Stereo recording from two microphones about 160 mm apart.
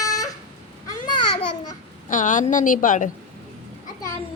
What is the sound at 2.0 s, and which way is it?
A woman's voice, 50° left (ahead or behind).